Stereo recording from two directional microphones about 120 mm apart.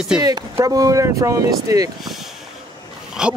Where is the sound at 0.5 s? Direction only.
30° right (ahead or behind).